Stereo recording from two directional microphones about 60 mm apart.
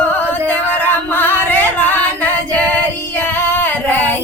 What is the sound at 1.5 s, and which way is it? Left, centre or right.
Singing, left.